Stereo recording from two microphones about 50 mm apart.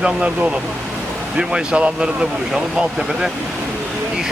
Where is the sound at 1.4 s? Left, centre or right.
Centre.